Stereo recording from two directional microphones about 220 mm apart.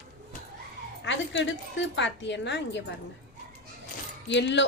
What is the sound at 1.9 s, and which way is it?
Speech, 55° left (ahead or behind).